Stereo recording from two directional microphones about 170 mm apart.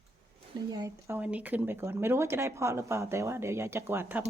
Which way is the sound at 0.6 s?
20° right (ahead or behind).